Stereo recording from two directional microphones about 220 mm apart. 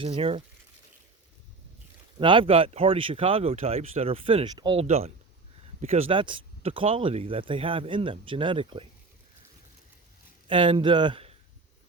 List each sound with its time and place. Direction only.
0.0 s speech: 25° right (ahead or behind)
2.1 s speech: 20° right (ahead or behind)
10.5 s speech: 20° right (ahead or behind)